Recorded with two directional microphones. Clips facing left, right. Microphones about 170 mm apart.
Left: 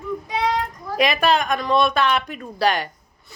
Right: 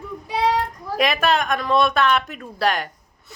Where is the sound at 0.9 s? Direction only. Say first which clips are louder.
Left 1 dB; centre (ahead or behind).